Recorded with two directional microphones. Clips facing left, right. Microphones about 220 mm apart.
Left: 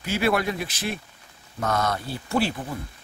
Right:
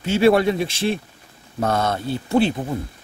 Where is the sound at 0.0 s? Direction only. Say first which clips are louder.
Right 8 dB; 25° right (ahead or behind).